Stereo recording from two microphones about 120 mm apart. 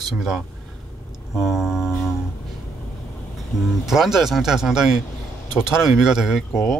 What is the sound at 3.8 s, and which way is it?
Speech, 5° right (ahead or behind).